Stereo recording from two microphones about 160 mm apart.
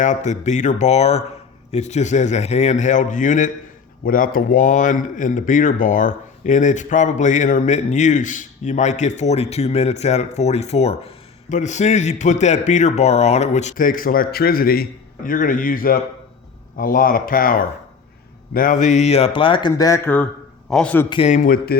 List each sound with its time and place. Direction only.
0.0 s a man's voice: 50° left (ahead or behind); by 20.2 s 15° left (ahead or behind)
20.7 s a man's voice: 5° left (ahead or behind)
21.2 s speech: 55° left (ahead or behind)